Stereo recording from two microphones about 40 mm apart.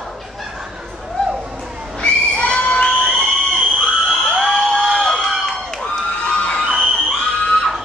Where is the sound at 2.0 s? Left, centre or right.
Left.